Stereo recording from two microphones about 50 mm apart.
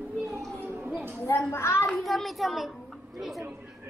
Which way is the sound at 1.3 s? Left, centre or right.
Left.